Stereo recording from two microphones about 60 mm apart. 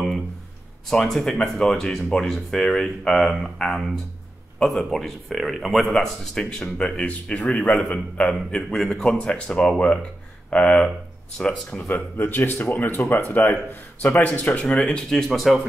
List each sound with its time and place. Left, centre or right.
0.8 s speech: centre
11.9 s speech: left
14.7 s speech: centre